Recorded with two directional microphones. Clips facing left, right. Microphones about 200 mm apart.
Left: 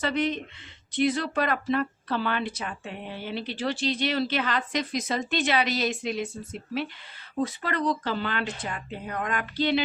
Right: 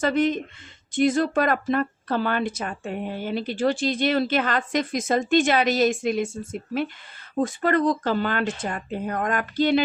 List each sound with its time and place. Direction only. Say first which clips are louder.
0.0 s a woman's voice: right 5 dB; 45° right (ahead or behind)